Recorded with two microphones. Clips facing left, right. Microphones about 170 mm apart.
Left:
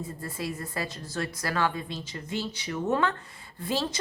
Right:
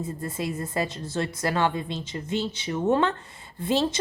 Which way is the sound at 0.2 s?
20° right (ahead or behind).